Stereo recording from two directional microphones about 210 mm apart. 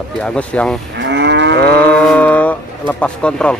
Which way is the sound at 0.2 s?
5° left (ahead or behind).